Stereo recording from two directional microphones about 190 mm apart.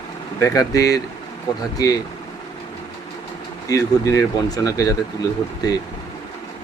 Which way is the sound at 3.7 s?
15° left (ahead or behind).